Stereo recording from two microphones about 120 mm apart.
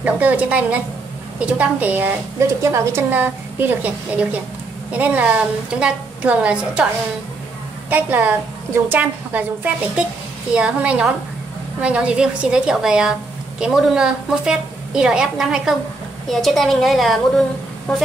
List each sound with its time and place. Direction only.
0.0 s a woman's voice: 15° right (ahead or behind)
7.9 s a woman's voice: 15° right (ahead or behind); by 18.0 s centre (ahead or behind)